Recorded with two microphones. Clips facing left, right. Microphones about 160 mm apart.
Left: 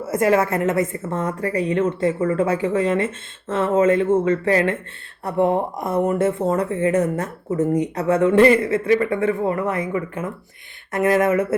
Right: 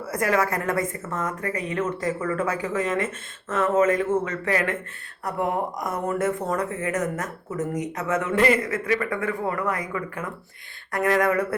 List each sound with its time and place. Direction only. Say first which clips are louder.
0.0 s speech: left 5 dB; 25° left (ahead or behind)